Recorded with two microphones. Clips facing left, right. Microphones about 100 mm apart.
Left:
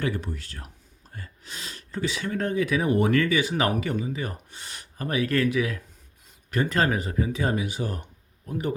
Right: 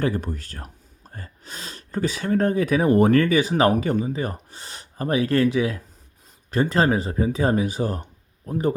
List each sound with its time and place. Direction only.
0.0 s speech: 40° right (ahead or behind)